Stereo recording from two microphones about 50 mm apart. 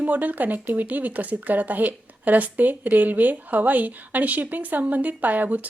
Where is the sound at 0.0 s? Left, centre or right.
Right.